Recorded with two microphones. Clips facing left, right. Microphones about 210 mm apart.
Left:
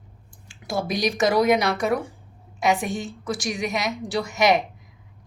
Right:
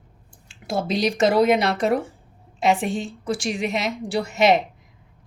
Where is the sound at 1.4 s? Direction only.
65° right (ahead or behind).